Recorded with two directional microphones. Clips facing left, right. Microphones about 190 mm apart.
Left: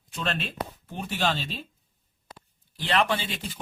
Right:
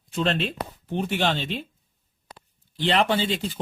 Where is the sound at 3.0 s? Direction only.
30° right (ahead or behind).